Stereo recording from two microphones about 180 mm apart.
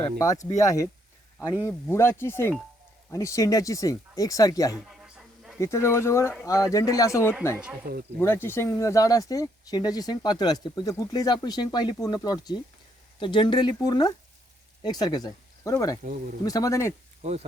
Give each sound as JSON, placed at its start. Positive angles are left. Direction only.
{"t": 0.0, "sound": "speech", "side_deg": 20}
{"t": 4.7, "sound": "a sound", "side_deg": -5}
{"t": 5.5, "sound": "speech", "side_deg": 15}
{"t": 7.5, "sound": "speech", "side_deg": -5}
{"t": 8.2, "sound": "speech", "side_deg": 15}